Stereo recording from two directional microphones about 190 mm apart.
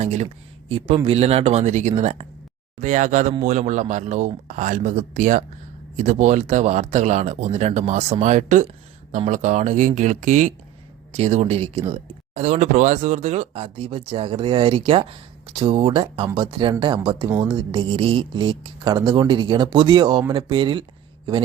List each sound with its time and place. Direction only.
0.0 s speech: 35° right (ahead or behind)